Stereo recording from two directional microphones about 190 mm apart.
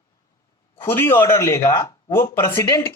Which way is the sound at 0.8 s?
15° left (ahead or behind).